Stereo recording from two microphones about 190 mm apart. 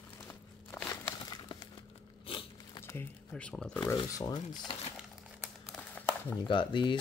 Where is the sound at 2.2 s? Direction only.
25° left (ahead or behind).